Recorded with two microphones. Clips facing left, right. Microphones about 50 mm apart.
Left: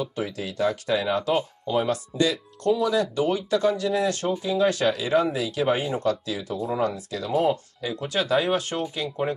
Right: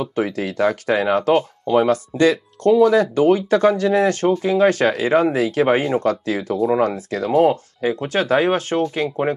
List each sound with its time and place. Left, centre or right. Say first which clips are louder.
0.0 s speech: right 7 dB; right